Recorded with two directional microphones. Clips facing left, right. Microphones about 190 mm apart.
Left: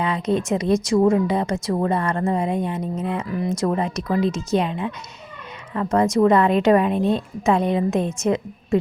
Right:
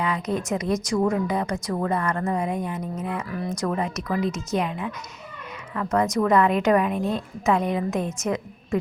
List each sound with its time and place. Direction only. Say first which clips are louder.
0.0 s speech: left 4 dB; 30° left (ahead or behind)